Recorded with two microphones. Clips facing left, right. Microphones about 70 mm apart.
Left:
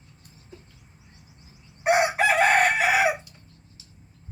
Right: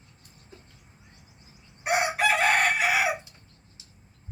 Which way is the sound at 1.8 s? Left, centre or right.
Left.